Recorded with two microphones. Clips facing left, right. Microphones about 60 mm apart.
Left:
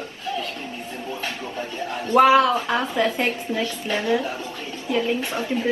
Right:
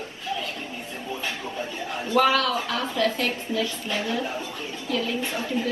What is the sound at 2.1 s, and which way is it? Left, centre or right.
A woman's voice, left.